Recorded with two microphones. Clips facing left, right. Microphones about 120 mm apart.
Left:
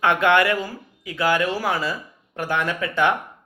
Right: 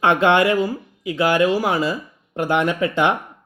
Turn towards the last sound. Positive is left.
turn(degrees=-20)  # may be behind; listen again after turning